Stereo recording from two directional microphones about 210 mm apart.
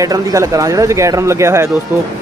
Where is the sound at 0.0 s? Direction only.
15° right (ahead or behind).